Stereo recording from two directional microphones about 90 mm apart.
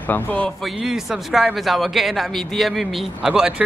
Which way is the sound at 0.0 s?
20° left (ahead or behind).